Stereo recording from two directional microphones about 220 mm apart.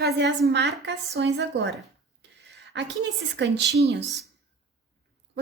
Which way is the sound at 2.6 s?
50° right (ahead or behind).